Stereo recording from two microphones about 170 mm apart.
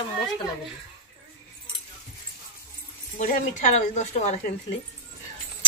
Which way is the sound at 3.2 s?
45° left (ahead or behind).